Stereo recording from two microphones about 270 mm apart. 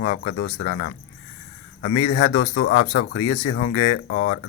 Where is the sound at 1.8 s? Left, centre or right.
Left.